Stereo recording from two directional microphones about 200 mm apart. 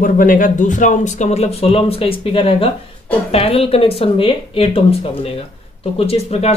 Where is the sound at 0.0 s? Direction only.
45° left (ahead or behind).